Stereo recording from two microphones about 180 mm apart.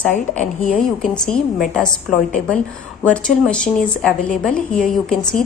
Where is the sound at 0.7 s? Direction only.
5° left (ahead or behind).